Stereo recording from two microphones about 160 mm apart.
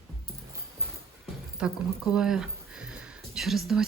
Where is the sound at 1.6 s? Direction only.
5° right (ahead or behind).